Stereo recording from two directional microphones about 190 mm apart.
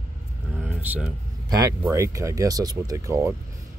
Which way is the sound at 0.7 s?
5° right (ahead or behind).